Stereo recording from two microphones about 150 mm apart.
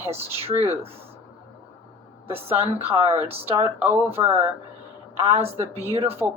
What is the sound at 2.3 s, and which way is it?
Speech, 40° right (ahead or behind).